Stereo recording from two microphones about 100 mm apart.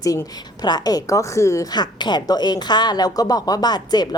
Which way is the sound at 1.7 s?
45° left (ahead or behind).